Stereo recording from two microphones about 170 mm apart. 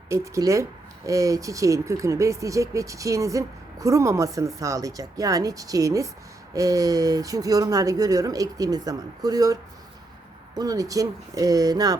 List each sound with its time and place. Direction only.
0.1 s speech: 20° right (ahead or behind)
10.6 s speech: 20° right (ahead or behind)